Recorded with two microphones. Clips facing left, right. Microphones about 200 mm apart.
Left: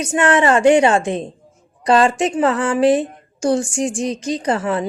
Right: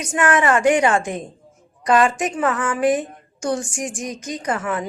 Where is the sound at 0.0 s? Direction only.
25° left (ahead or behind).